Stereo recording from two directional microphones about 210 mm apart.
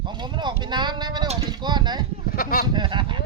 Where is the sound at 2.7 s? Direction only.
20° right (ahead or behind).